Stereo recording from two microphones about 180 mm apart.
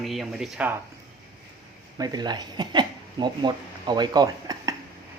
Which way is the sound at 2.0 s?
25° right (ahead or behind).